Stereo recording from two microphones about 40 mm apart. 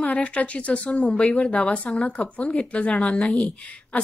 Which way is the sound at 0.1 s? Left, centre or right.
Left.